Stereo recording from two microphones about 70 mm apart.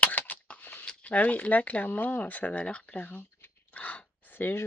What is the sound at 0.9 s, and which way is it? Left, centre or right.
Speech, left.